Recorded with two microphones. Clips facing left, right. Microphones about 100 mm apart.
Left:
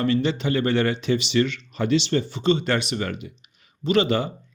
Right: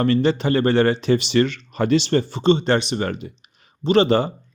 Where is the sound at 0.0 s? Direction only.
40° right (ahead or behind).